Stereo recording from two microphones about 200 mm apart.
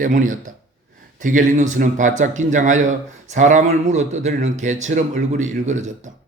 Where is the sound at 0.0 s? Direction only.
40° right (ahead or behind).